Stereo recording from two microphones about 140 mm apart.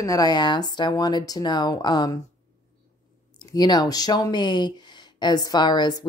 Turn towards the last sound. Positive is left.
turn(degrees=30)  # may be behind; listen again after turning